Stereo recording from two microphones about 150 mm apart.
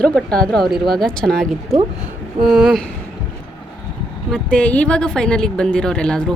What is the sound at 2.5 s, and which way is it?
Speech, 5° right (ahead or behind).